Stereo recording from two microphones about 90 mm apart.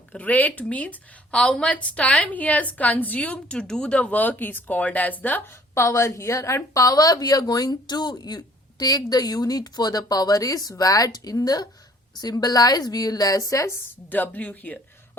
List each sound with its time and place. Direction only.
0.1 s speech: 15° left (ahead or behind)
5.7 s a woman's voice: 30° left (ahead or behind)
14.1 s speech: 20° left (ahead or behind)